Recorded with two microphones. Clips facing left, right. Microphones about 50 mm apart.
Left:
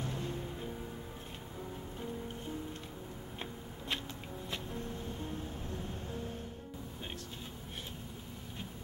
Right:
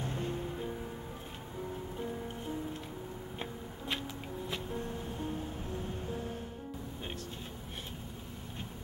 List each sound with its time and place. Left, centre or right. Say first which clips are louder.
0.0 s music: right 2 dB; right
2.0 s music: right 1 dB; centre
3.3 s a sound: right 3 dB; centre
4.5 s music: right 2 dB; centre